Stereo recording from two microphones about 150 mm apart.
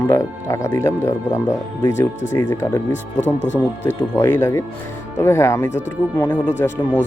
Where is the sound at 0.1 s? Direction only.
20° left (ahead or behind).